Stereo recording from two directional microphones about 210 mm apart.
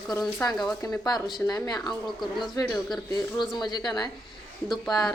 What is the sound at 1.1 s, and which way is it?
Speech, 20° left (ahead or behind).